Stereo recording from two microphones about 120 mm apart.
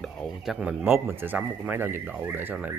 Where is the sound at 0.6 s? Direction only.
15° right (ahead or behind).